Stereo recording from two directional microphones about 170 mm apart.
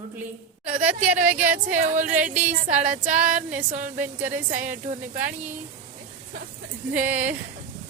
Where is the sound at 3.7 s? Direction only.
50° right (ahead or behind).